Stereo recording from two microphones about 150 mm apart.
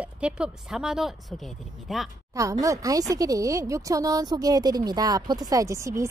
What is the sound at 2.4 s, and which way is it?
Speech, 20° right (ahead or behind).